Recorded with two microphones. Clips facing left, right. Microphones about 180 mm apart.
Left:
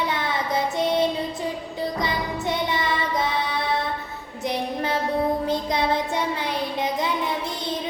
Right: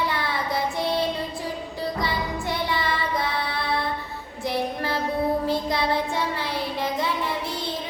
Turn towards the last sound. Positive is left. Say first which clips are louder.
# left 1 dB
turn(degrees=20)  # may be behind; listen again after turning